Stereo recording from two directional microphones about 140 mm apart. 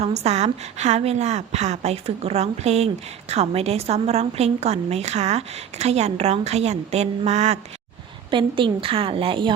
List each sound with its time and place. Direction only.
0.0 s a woman's voice: 50° right (ahead or behind)
8.3 s a woman's voice: 35° right (ahead or behind)